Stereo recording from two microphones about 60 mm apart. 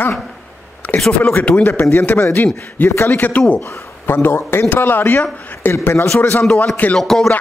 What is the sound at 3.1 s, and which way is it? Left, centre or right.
Speech, left.